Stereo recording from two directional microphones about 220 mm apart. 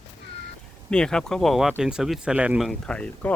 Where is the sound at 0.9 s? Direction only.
5° left (ahead or behind).